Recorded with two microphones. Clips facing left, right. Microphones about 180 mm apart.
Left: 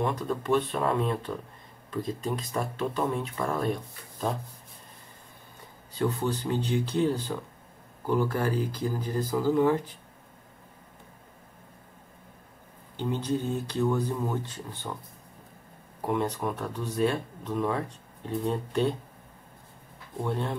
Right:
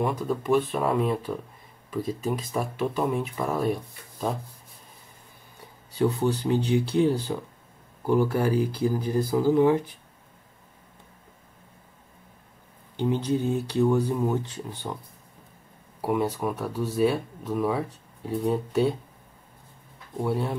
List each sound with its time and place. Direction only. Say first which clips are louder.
0.0 s speech: right 2 dB; 5° right (ahead or behind)
5.9 s speech: right 4 dB; 15° right (ahead or behind)
12.9 s speech: right 4 dB; 10° right (ahead or behind)
16.0 s speech: right 3 dB; 5° right (ahead or behind)
20.2 s speech: right 3 dB; 5° right (ahead or behind)